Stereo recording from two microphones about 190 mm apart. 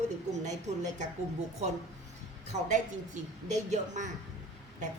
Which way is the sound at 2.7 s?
40° right (ahead or behind).